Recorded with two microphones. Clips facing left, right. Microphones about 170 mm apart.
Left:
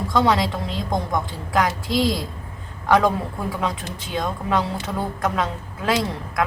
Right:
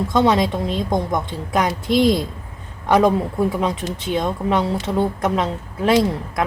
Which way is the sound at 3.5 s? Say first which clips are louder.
Right 4 dB; 20° right (ahead or behind).